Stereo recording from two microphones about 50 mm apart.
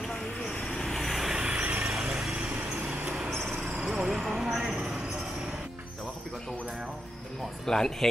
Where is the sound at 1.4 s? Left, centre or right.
Right.